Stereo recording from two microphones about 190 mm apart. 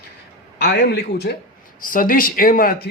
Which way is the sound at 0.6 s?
60° left (ahead or behind).